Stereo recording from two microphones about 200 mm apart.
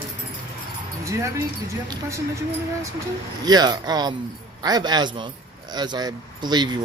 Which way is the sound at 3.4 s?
20° right (ahead or behind).